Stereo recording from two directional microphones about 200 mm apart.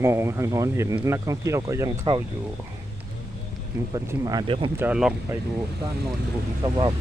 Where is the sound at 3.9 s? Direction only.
20° right (ahead or behind).